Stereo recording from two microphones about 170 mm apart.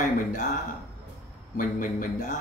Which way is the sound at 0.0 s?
50° left (ahead or behind).